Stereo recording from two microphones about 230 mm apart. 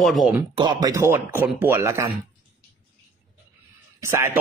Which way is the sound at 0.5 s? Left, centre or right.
Centre.